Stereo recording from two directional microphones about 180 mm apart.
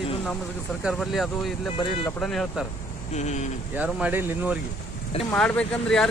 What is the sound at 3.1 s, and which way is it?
Speech, 40° left (ahead or behind).